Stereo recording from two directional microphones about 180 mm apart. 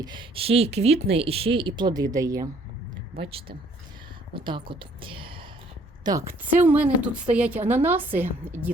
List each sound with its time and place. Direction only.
0.0 s speech: 25° right (ahead or behind)
3.2 s speech: 30° right (ahead or behind)
6.1 s a woman's voice: 15° right (ahead or behind)